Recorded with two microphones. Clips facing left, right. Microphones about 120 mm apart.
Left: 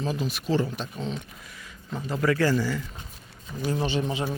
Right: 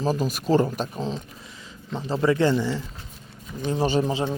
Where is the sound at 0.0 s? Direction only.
40° right (ahead or behind); by 2.8 s 25° right (ahead or behind).